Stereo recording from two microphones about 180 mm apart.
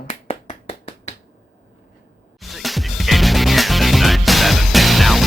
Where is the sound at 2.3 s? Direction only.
Centre (ahead or behind).